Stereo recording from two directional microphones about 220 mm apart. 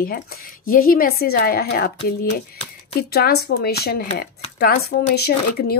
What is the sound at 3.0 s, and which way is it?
Speech, 45° left (ahead or behind).